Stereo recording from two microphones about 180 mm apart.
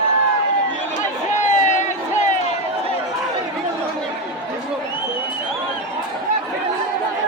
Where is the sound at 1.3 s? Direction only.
40° left (ahead or behind).